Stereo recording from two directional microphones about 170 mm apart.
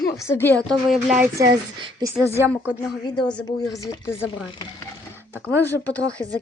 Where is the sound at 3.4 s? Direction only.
20° left (ahead or behind).